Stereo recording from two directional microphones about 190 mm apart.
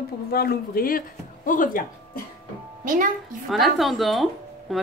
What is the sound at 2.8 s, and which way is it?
Speech, 45° right (ahead or behind).